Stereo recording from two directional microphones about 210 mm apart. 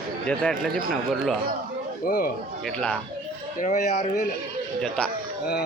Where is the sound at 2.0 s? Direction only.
45° left (ahead or behind).